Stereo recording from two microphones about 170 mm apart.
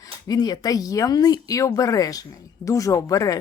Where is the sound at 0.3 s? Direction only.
25° left (ahead or behind).